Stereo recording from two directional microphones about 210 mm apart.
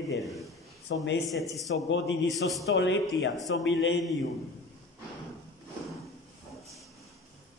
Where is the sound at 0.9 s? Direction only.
60° left (ahead or behind).